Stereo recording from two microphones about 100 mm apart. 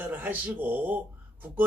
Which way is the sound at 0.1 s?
15° right (ahead or behind).